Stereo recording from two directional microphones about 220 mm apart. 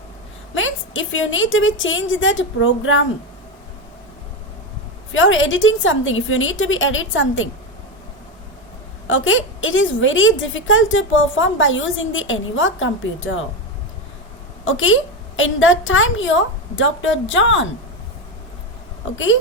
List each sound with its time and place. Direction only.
0.5 s a woman's voice: 60° left (ahead or behind)
5.1 s a woman's voice: 60° left (ahead or behind)
9.0 s a woman's voice: 60° left (ahead or behind)
14.6 s a woman's voice: 65° left (ahead or behind)
19.1 s a woman's voice: 60° left (ahead or behind)